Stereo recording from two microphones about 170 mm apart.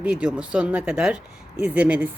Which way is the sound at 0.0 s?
5° right (ahead or behind).